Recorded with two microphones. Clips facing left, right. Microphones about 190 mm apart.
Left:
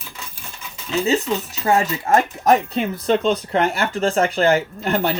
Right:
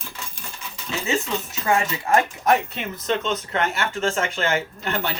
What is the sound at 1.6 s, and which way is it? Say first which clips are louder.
Speech: left 4 dB; 40° left (ahead or behind).